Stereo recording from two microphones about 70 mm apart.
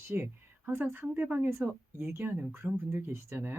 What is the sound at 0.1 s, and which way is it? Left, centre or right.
A woman's voice, right.